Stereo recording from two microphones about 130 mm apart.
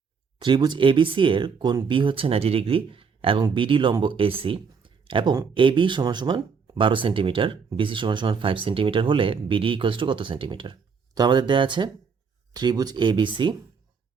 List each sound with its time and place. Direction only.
0.3 s speech: 40° right (ahead or behind)